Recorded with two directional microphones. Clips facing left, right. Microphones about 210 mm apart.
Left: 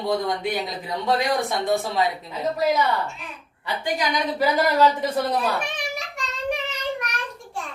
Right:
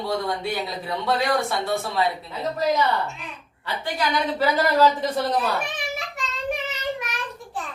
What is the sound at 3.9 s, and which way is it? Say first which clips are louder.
Speech: right 1 dB; 15° left (ahead or behind).